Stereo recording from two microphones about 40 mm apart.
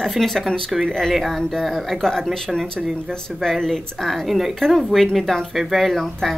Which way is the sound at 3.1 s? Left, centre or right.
Centre.